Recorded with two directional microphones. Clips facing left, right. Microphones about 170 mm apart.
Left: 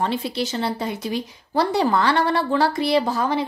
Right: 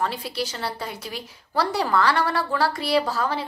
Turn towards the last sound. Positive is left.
turn(degrees=20)  # may be behind; listen again after turning